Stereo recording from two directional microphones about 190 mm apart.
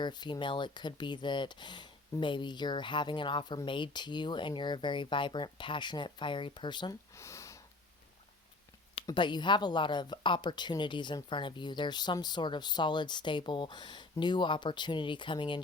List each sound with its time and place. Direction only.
0.0 s speech: 25° left (ahead or behind)
9.0 s speech: 25° left (ahead or behind)